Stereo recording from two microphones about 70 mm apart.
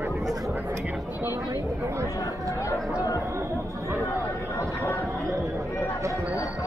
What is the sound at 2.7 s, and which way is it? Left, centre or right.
Speech, left.